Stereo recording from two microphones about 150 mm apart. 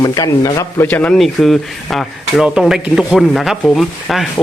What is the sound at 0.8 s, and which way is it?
A man's voice, 10° left (ahead or behind).